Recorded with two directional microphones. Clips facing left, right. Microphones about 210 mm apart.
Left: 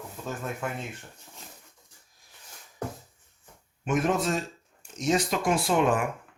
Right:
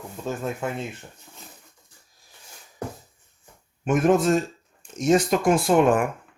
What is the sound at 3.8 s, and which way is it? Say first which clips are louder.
Speech: right 6 dB; 50° right (ahead or behind).